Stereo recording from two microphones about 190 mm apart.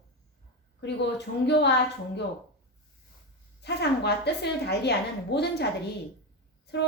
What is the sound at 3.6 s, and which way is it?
A woman's voice, 60° left (ahead or behind).